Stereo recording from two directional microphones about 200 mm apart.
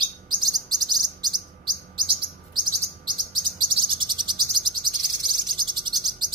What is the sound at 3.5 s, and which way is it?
Bird, 25° right (ahead or behind).